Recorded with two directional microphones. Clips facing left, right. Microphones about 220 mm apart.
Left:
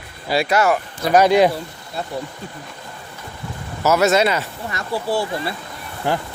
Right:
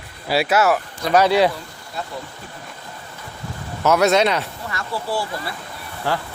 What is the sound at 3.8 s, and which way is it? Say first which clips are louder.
Speech: even; 5° left (ahead or behind).